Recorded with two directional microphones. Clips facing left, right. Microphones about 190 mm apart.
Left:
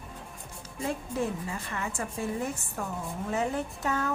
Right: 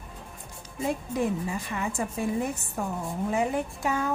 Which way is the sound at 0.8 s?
15° right (ahead or behind).